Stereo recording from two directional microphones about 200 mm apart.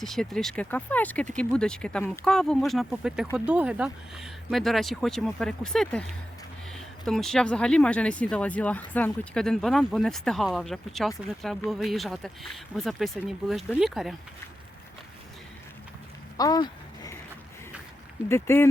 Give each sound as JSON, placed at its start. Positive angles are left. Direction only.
{"t": 0.0, "sound": "speech", "side_deg": 0}
{"t": 16.4, "sound": "a sound", "side_deg": 20}
{"t": 18.3, "sound": "speech", "side_deg": 10}